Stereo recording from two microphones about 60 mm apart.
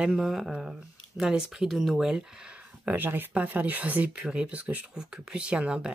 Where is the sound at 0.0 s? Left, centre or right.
Centre.